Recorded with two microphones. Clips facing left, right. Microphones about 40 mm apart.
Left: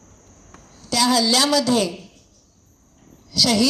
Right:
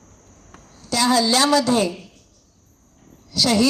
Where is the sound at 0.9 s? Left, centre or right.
Right.